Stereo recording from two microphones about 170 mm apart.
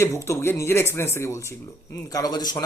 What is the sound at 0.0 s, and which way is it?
Speech, 15° left (ahead or behind).